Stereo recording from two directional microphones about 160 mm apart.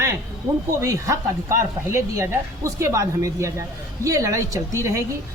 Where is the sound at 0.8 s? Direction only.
20° right (ahead or behind).